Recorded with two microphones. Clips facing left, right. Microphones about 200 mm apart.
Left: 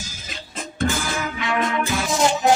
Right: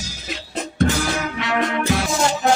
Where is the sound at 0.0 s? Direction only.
70° right (ahead or behind).